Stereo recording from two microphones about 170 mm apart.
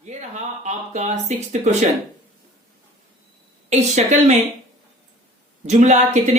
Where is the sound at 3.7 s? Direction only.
45° right (ahead or behind).